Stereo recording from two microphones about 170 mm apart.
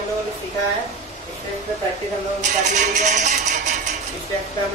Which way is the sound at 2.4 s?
45° right (ahead or behind).